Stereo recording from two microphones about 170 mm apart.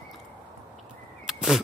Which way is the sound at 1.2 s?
Centre (ahead or behind).